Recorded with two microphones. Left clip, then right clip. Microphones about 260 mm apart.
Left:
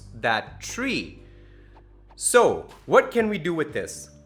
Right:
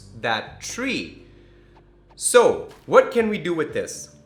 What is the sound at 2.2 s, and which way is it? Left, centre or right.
Speech, left.